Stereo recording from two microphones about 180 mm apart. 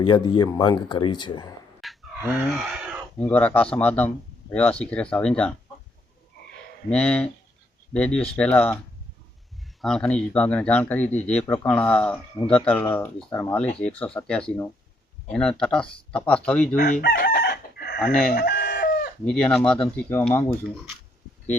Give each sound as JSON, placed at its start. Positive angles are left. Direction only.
{"t": 0.0, "sound": "speech", "side_deg": 25}
{"t": 1.8, "sound": "fowl", "side_deg": 0}
{"t": 3.2, "sound": "speech", "side_deg": 10}
{"t": 6.9, "sound": "speech", "side_deg": 5}
{"t": 9.8, "sound": "speech", "side_deg": 5}
{"t": 16.7, "sound": "chicken", "side_deg": 60}
{"t": 18.0, "sound": "speech", "side_deg": 5}
{"t": 18.3, "sound": "chicken", "side_deg": 60}
{"t": 19.2, "sound": "speech", "side_deg": 5}